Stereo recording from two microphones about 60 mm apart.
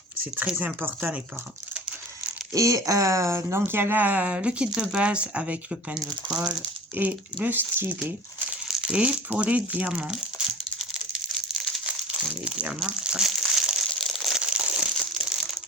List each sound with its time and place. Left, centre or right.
0.6 s speech: right
2.5 s speech: right; by 6.6 s centre
7.0 s speech: right
8.6 s speech: centre
10.8 s crumpling: centre
12.1 s speech: centre
13.2 s crumpling: centre
14.4 s crumpling: centre